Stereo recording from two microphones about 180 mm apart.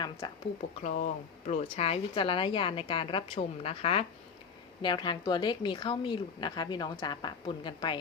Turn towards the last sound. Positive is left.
turn(degrees=25)  # may be behind; listen again after turning